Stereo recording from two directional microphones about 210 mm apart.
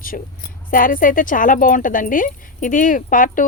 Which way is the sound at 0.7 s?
40° left (ahead or behind).